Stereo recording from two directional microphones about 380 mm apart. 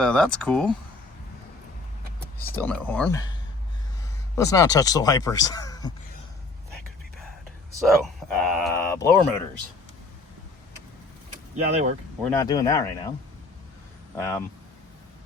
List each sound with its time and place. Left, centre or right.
0.0 s speech: centre
2.4 s speech: centre
4.4 s speech: centre
7.7 s speech: centre
11.5 s speech: centre
12.2 s speech: centre
14.2 s speech: centre